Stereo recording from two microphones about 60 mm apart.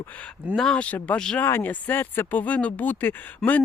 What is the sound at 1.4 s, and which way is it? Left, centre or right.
Speech, left.